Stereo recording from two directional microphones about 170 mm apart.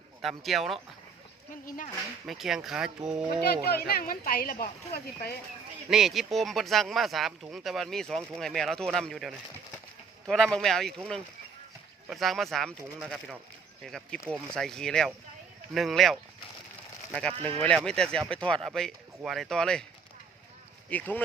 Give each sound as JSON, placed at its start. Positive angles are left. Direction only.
{"t": 0.2, "sound": "speech", "side_deg": 0}
{"t": 1.6, "sound": "speech", "side_deg": 55}
{"t": 2.2, "sound": "speech", "side_deg": 0}
{"t": 3.7, "sound": "speech", "side_deg": 65}
{"t": 5.9, "sound": "speech", "side_deg": 0}
{"t": 17.6, "sound": "speech", "side_deg": 5}
{"t": 20.9, "sound": "speech", "side_deg": 10}